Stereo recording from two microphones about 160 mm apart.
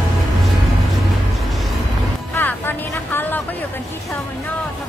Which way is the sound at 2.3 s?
15° left (ahead or behind).